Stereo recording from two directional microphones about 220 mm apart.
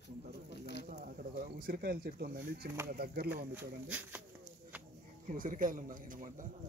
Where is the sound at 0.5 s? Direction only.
50° left (ahead or behind).